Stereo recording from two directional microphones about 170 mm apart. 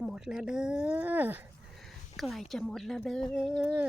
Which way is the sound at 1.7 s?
Centre (ahead or behind).